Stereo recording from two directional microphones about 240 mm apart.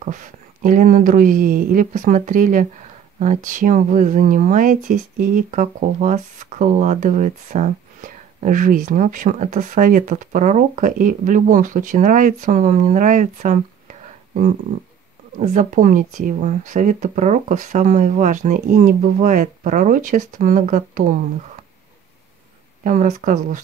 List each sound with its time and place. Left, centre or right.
0.0 s speech: right
15.3 s speech: right
22.8 s speech: right